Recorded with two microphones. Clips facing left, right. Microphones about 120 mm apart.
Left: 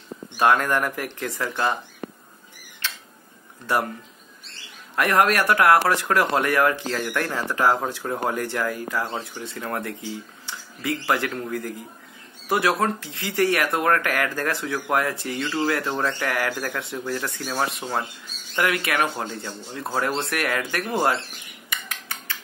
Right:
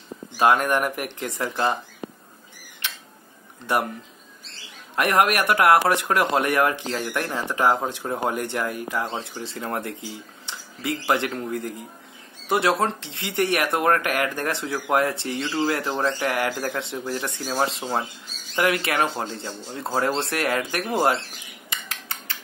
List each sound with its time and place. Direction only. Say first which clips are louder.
0.4 s speech: right 1 dB; 20° right (ahead or behind)
2.8 s a sound: left 1 dB; 20° right (ahead or behind)
3.6 s speech: even; 20° right (ahead or behind)
4.9 s speech: even; 20° right (ahead or behind)